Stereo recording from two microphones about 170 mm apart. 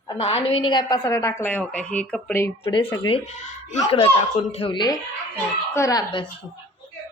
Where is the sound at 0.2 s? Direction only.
35° left (ahead or behind); by 2.5 s 10° left (ahead or behind).